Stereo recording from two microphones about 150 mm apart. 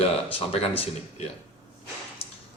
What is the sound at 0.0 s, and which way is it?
Speech, 40° left (ahead or behind).